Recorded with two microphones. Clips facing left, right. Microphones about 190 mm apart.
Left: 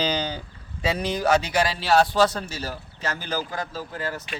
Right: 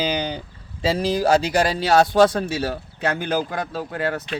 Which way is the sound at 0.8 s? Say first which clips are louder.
Right 4 dB; 30° right (ahead or behind).